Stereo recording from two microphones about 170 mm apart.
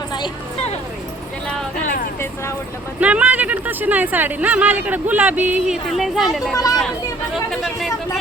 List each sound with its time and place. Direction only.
3.0 s speech: 10° right (ahead or behind)
6.5 s speech: 20° left (ahead or behind)
7.5 s speech: centre (ahead or behind)